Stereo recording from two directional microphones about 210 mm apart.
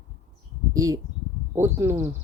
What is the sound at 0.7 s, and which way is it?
Speech, 15° right (ahead or behind).